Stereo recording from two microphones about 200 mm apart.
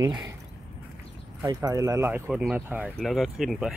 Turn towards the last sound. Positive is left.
turn(degrees=0)  # may be behind; listen again after turning